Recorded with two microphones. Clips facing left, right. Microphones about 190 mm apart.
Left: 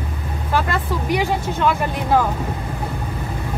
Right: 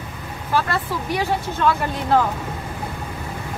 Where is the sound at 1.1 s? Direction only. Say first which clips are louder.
Left 2 dB; 15° left (ahead or behind).